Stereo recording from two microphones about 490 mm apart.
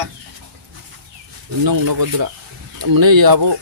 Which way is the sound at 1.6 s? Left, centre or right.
Right.